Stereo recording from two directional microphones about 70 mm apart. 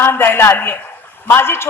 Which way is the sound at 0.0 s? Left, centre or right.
Left.